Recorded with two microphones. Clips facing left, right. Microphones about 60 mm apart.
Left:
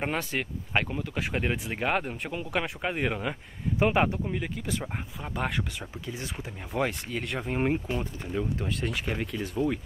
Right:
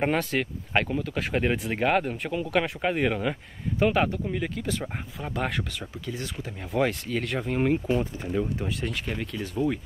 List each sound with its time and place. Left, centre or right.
0.1 s speech: centre
6.7 s speech: centre
8.2 s speech: centre
9.0 s speech: centre